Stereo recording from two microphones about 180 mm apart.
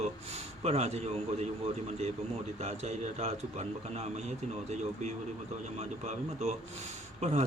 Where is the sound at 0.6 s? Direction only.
35° right (ahead or behind).